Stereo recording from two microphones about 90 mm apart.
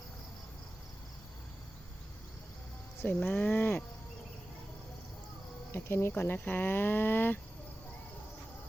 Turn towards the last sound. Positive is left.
turn(degrees=20)  # may be behind; listen again after turning